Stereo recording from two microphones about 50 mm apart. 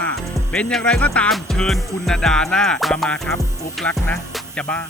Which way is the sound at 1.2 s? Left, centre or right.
Left.